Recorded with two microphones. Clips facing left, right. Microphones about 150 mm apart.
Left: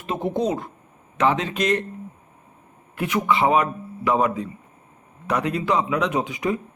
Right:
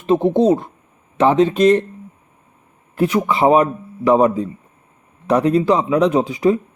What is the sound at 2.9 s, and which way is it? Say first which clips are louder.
Speech: right 5 dB; 35° right (ahead or behind).